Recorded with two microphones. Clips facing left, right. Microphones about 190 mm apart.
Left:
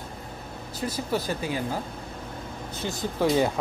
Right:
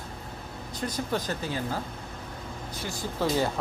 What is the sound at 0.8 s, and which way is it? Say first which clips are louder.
Speech: left 2 dB; 5° left (ahead or behind).